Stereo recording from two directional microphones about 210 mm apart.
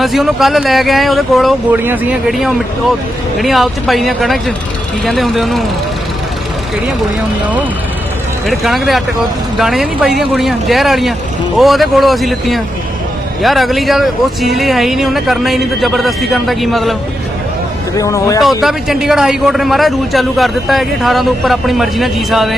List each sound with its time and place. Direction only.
0.0 s a man's voice: centre (ahead or behind)
8.4 s a man's voice: centre (ahead or behind)
17.9 s speech: 15° left (ahead or behind)
18.6 s a man's voice: centre (ahead or behind)